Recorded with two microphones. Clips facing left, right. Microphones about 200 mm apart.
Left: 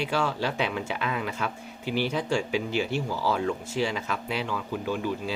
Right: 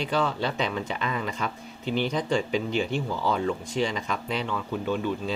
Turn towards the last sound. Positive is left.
turn(degrees=5)  # may be behind; listen again after turning